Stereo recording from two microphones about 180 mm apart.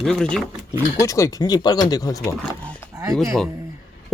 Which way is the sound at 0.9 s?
15° left (ahead or behind).